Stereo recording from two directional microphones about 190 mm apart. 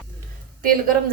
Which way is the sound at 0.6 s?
50° right (ahead or behind).